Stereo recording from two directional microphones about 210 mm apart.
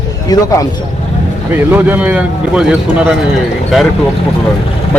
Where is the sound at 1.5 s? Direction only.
10° right (ahead or behind).